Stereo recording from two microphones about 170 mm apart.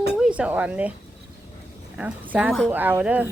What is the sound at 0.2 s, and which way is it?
Speech, 5° right (ahead or behind).